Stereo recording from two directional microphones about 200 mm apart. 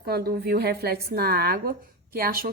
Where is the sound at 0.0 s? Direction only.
50° right (ahead or behind).